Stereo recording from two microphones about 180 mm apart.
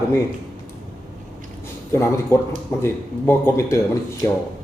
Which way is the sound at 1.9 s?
15° left (ahead or behind).